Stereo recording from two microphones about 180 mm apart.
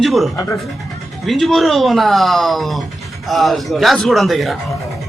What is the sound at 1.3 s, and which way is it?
A man's voice, centre (ahead or behind).